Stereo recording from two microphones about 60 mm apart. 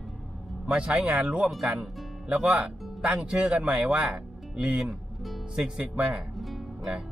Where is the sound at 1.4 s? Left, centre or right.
Centre.